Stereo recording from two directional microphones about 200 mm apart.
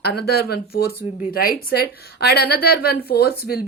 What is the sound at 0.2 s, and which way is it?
A woman's voice, 55° left (ahead or behind).